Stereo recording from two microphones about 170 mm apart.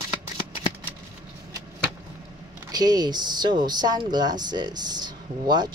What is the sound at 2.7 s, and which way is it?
A man's voice, 25° right (ahead or behind).